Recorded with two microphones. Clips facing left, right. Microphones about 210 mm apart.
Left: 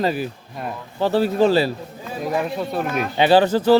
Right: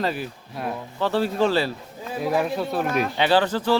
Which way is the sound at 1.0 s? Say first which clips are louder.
Left 4 dB; 40° left (ahead or behind).